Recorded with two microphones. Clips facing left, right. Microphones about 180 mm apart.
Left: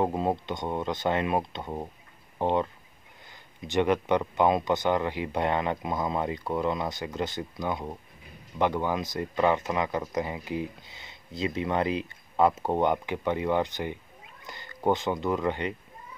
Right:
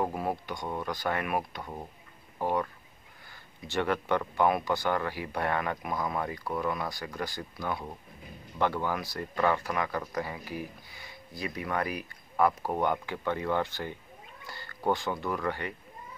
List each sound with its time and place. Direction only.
0.0 s speech: 20° left (ahead or behind)